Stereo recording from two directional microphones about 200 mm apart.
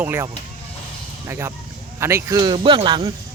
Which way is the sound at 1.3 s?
15° right (ahead or behind).